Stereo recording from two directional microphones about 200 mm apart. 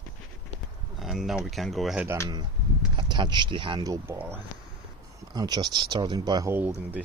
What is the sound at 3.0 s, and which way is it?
Speech, 25° right (ahead or behind).